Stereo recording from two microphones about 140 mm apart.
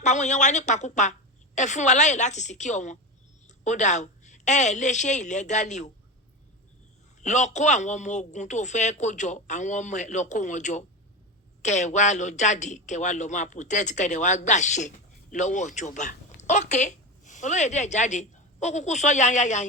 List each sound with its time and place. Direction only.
0.0 s a man's voice: 60° left (ahead or behind)
7.2 s a man's voice: 60° left (ahead or behind)